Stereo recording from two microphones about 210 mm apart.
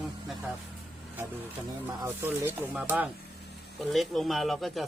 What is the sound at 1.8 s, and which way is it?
Speech, 10° right (ahead or behind).